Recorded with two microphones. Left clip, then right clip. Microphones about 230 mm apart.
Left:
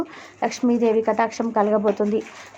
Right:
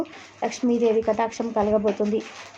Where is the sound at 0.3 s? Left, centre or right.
Centre.